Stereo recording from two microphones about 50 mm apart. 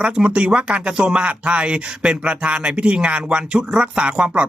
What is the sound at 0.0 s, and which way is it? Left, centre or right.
Speech, right.